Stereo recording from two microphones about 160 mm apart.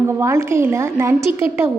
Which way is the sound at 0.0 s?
15° right (ahead or behind).